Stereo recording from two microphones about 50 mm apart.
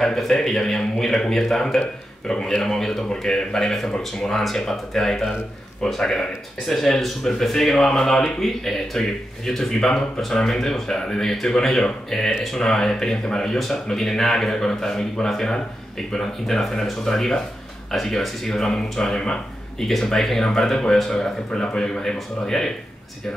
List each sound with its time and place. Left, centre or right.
0.0 s speech: centre
19.1 s speech: centre
19.9 s speech: centre